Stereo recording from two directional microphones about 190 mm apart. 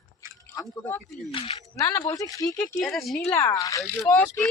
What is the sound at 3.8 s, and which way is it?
Speech, centre (ahead or behind).